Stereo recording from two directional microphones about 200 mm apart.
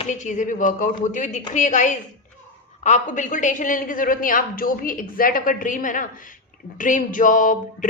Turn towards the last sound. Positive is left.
turn(degrees=40)  # may be behind; listen again after turning